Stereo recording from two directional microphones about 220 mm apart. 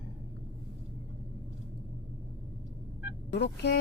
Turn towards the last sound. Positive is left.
turn(degrees=50)  # may be behind; listen again after turning